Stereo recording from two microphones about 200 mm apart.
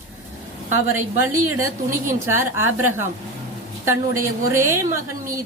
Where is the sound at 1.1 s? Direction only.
15° right (ahead or behind).